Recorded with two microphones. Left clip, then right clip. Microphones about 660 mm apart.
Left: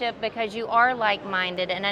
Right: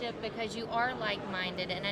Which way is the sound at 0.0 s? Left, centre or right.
Left.